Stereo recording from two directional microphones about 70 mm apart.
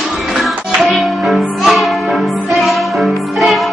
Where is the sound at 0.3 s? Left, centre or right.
Centre.